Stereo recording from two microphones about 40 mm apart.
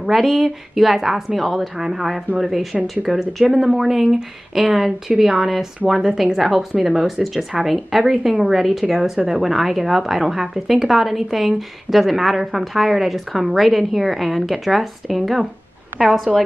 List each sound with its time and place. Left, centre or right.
0.1 s a woman's voice: centre
3.0 s a woman's voice: centre
5.2 s a woman's voice: centre